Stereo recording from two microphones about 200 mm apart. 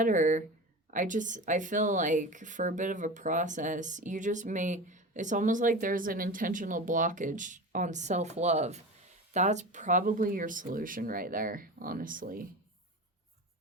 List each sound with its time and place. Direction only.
0.0 s speech: 40° right (ahead or behind)